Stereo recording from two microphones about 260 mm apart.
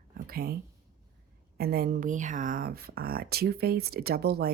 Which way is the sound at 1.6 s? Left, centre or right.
Right.